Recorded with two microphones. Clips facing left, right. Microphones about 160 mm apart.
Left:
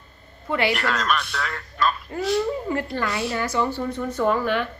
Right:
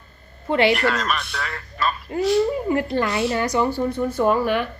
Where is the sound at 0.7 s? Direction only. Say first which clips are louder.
Right 3 dB; centre (ahead or behind).